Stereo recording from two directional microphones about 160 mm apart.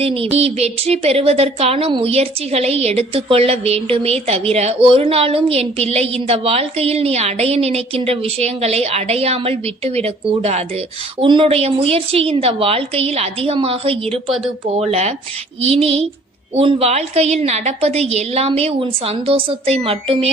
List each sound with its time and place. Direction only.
0.0 s speech: 35° right (ahead or behind)